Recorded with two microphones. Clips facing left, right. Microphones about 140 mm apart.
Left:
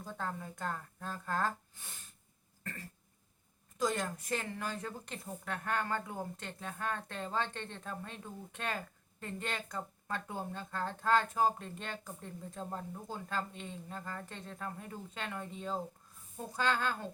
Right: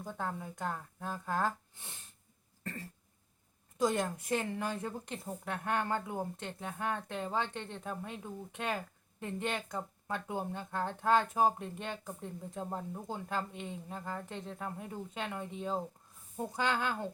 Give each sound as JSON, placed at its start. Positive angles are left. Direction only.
{"t": 0.0, "sound": "speech", "side_deg": -15}
{"t": 3.8, "sound": "a woman's voice", "side_deg": -20}